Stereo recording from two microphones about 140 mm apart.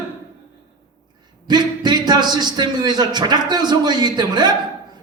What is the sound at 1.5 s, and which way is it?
A man's voice, 30° right (ahead or behind).